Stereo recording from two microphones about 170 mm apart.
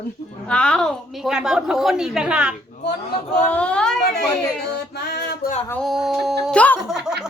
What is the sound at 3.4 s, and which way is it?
Speech, 10° left (ahead or behind).